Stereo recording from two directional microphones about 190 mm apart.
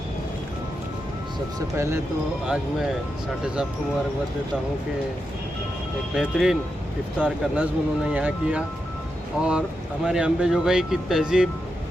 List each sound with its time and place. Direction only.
1.5 s speech: 15° right (ahead or behind)
3.4 s speech: 5° right (ahead or behind)
6.1 s speech: centre (ahead or behind)